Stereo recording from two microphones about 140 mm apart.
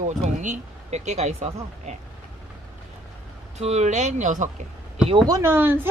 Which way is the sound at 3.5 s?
50° right (ahead or behind).